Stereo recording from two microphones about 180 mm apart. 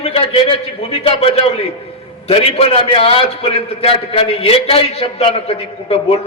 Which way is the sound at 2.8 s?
30° left (ahead or behind).